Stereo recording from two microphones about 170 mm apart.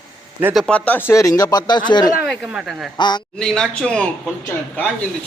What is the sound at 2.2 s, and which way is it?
Speech, centre (ahead or behind).